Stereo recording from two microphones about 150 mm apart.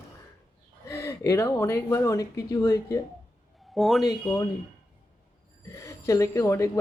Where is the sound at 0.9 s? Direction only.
20° left (ahead or behind).